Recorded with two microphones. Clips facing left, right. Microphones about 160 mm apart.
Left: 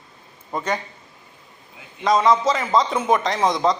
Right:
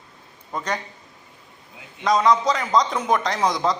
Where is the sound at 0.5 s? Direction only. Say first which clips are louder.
Left 3 dB; 5° left (ahead or behind).